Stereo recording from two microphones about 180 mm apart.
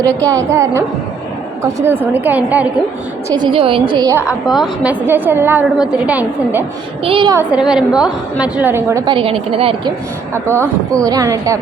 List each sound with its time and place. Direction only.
0.3 s a woman's voice: 15° right (ahead or behind)
3.2 s a woman's voice: 25° right (ahead or behind)
4.3 s a woman's voice: centre (ahead or behind)
7.0 s a woman's voice: 30° right (ahead or behind)
7.3 s a woman's voice: 5° right (ahead or behind)
9.0 s a woman's voice: 30° right (ahead or behind)
11.0 s a woman's voice: 20° right (ahead or behind)